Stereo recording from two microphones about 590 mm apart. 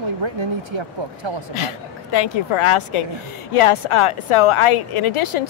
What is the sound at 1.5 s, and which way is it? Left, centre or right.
A woman's voice, left.